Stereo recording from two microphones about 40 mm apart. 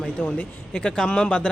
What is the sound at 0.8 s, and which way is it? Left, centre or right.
Speech, centre.